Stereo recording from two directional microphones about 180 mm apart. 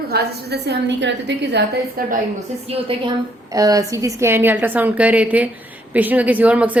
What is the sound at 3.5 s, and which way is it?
A woman's voice, 20° right (ahead or behind).